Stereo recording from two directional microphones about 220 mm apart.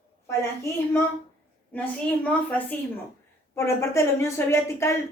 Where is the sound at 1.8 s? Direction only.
5° left (ahead or behind).